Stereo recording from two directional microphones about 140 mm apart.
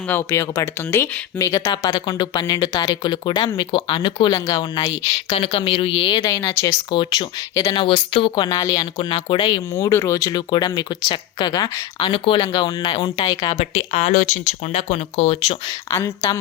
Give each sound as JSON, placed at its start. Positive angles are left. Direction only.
{"t": 0.1, "sound": "speech", "side_deg": 20}
{"t": 4.3, "sound": "speech", "side_deg": 25}
{"t": 5.3, "sound": "speech", "side_deg": 45}
{"t": 6.2, "sound": "speech", "side_deg": 20}
{"t": 6.9, "sound": "speech", "side_deg": 30}
{"t": 7.8, "sound": "speech", "side_deg": 40}
{"t": 9.7, "sound": "speech", "side_deg": 20}
{"t": 13.6, "sound": "speech", "side_deg": 55}
{"t": 15.7, "sound": "speech", "side_deg": 20}